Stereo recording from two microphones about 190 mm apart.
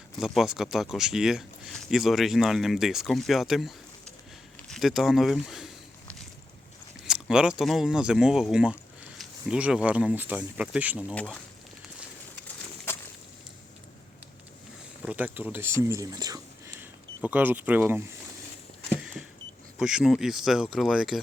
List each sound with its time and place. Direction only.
0.2 s speech: centre (ahead or behind)
4.7 s walk: centre (ahead or behind)
7.0 s speech: 5° right (ahead or behind)
10.9 s speech: 5° left (ahead or behind)
15.0 s speech: 10° right (ahead or behind)
18.9 s power windows: 5° right (ahead or behind)
19.8 s speech: 5° right (ahead or behind)